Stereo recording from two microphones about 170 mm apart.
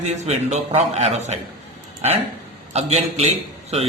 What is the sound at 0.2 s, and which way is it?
A man's voice, 40° right (ahead or behind).